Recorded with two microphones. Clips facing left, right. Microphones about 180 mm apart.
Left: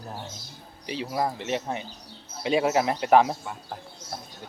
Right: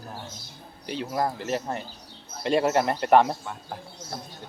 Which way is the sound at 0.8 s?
5° left (ahead or behind).